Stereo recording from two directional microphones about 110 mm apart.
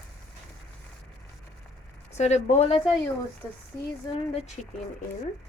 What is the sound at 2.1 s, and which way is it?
Speech, 75° left (ahead or behind).